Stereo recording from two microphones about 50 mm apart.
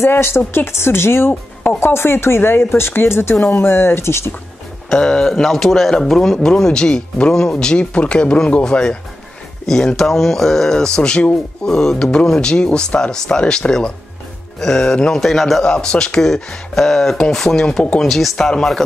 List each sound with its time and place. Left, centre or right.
0.0 s speech: left
4.8 s speech: centre
11.0 s speech: left
15.2 s speech: centre
15.6 s speech: centre